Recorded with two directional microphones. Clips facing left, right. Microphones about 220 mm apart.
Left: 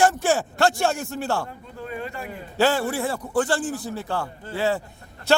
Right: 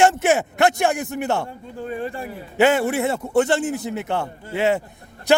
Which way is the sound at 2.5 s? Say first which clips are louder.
Right 4 dB; 20° right (ahead or behind).